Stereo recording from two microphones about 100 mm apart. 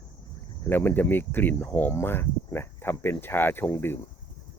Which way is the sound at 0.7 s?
20° left (ahead or behind).